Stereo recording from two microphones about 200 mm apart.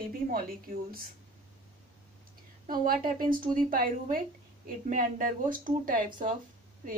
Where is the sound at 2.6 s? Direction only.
45° right (ahead or behind).